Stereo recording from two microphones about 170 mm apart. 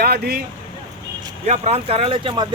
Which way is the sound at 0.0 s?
70° right (ahead or behind).